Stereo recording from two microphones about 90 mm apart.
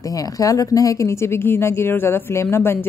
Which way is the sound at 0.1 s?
40° left (ahead or behind).